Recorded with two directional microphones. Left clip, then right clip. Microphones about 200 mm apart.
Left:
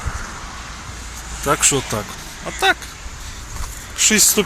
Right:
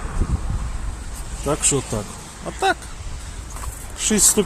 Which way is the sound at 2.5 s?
25° right (ahead or behind).